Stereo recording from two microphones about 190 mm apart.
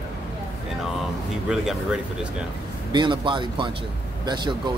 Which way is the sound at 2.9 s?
25° right (ahead or behind).